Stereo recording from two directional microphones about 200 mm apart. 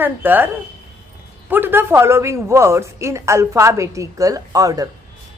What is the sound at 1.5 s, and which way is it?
A woman's voice, 10° right (ahead or behind).